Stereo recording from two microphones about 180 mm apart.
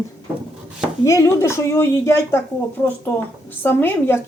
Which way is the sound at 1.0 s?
15° left (ahead or behind).